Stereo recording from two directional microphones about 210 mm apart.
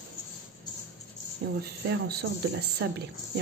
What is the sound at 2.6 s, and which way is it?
Speech, 50° right (ahead or behind).